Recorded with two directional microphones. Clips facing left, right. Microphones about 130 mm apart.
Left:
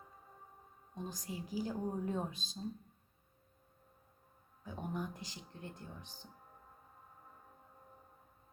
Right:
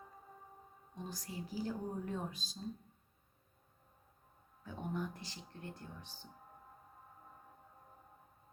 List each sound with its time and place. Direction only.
1.0 s speech: 20° left (ahead or behind)
4.6 s speech: 15° left (ahead or behind)